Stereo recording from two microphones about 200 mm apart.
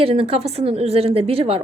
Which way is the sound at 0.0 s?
30° right (ahead or behind).